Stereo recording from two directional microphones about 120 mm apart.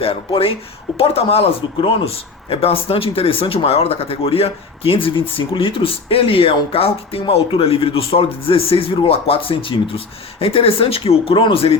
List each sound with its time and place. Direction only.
0.0 s speech: 50° left (ahead or behind)